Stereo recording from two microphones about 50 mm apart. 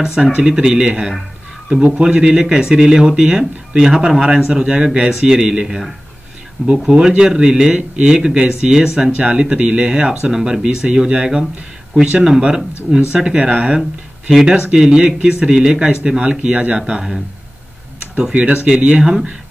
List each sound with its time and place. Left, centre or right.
0.0 s speech: centre
6.9 s speech: centre
18.3 s speech: right